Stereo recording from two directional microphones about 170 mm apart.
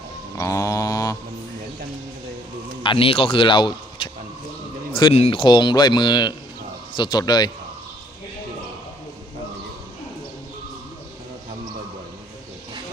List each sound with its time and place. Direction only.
0.3 s mantra: 20° left (ahead or behind)
2.8 s speech: 30° left (ahead or behind)